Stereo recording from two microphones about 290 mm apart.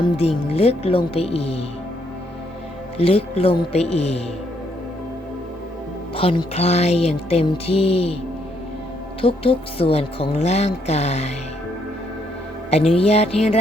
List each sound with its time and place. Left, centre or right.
0.0 s speech: left
3.0 s speech: centre
6.1 s speech: centre
9.2 s speech: centre
12.7 s speech: centre